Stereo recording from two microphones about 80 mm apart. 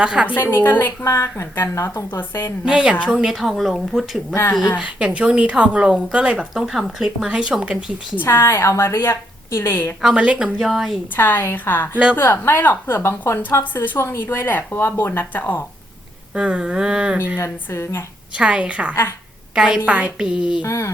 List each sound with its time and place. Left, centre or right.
0.0 s speech: centre
0.3 s speech: left
1.0 s a woman's voice: left
2.6 s speech: centre
4.8 s speech: centre
8.1 s a woman's voice: left
10.0 s speech: centre
11.2 s speech: left
16.3 s speech: centre
17.4 s a woman's voice: left
18.3 s speech: centre
20.7 s a woman's voice: left